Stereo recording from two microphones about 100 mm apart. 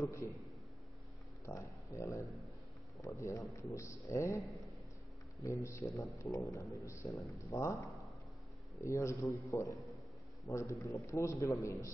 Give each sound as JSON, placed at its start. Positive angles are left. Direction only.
{"t": 0.0, "sound": "speech", "side_deg": 30}
{"t": 1.4, "sound": "a sound", "side_deg": 30}
{"t": 3.0, "sound": "speech", "side_deg": 30}
{"t": 5.4, "sound": "speech", "side_deg": 30}
{"t": 8.8, "sound": "speech", "side_deg": 30}